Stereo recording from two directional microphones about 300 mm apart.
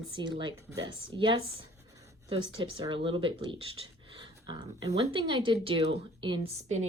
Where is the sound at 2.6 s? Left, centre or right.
Centre.